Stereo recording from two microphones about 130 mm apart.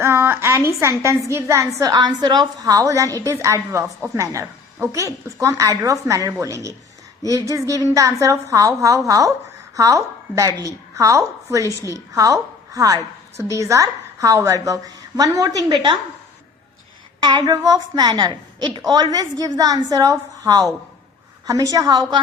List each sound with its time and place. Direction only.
0.0 s a woman's voice: 20° right (ahead or behind); by 16.0 s 35° right (ahead or behind)
17.2 s a woman's voice: 30° right (ahead or behind)